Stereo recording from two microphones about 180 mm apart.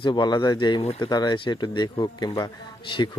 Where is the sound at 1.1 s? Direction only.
25° left (ahead or behind).